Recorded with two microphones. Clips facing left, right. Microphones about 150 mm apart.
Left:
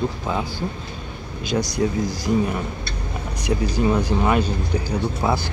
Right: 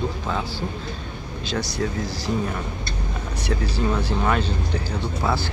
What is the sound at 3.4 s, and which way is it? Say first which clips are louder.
Speech: left 4 dB; 15° left (ahead or behind).